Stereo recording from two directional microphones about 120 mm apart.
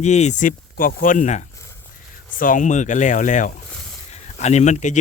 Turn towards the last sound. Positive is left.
turn(degrees=80)